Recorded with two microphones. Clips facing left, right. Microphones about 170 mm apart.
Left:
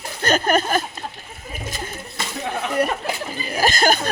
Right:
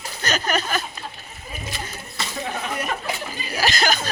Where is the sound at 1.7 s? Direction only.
45° left (ahead or behind).